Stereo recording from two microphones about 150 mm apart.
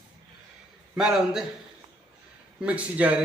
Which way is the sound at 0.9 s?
5° right (ahead or behind).